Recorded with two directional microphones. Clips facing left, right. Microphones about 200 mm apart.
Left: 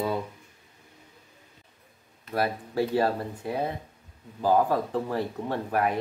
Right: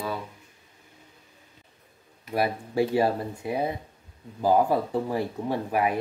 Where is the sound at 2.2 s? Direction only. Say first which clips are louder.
Right 1 dB; 15° right (ahead or behind).